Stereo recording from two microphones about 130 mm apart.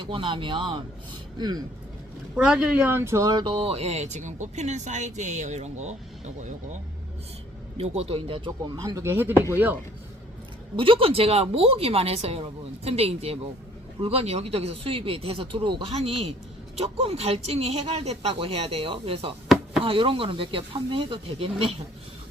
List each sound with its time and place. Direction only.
0.1 s speech: 40° right (ahead or behind)
2.3 s speech: 5° right (ahead or behind); by 3.5 s 30° right (ahead or behind)
3.5 s speech: 50° right (ahead or behind)
7.8 s a woman's voice: 50° right (ahead or behind)
8.4 s speech: 30° right (ahead or behind)
10.8 s a woman's voice: 40° right (ahead or behind)